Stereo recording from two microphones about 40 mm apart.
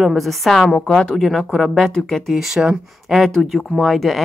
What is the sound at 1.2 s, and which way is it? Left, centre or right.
Speech, centre.